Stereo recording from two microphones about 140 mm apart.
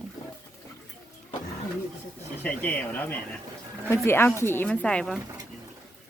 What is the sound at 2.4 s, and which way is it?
Speech, 15° left (ahead or behind).